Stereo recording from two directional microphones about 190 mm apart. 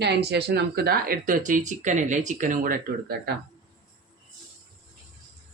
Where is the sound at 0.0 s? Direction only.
60° right (ahead or behind).